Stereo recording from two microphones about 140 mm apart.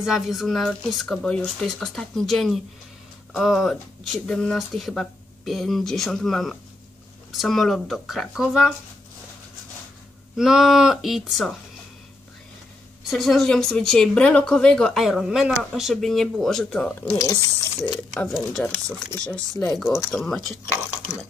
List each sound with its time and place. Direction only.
0.0 s speech: centre (ahead or behind)
10.3 s speech: 5° right (ahead or behind)
13.0 s speech: centre (ahead or behind)
17.2 s speech: 25° left (ahead or behind)
17.8 s speech: centre (ahead or behind)